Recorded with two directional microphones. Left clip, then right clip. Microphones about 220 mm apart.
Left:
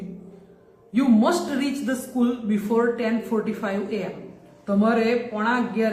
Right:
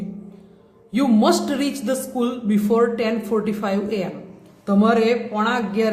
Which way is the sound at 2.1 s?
50° right (ahead or behind).